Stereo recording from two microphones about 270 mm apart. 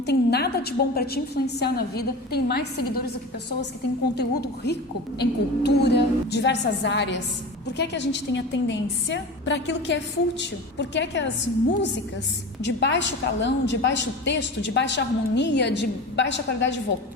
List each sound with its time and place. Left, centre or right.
0.0 s a woman's voice: left
4.1 s a woman's voice: left
12.6 s a woman's voice: left